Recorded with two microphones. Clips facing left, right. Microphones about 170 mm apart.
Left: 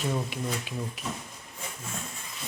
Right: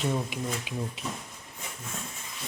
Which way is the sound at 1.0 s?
25° right (ahead or behind).